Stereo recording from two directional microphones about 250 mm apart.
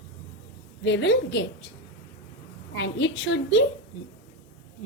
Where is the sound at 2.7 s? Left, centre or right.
Left.